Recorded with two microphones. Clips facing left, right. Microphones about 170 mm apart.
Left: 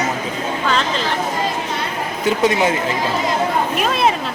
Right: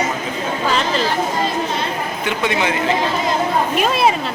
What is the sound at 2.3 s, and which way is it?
Speech, 40° left (ahead or behind).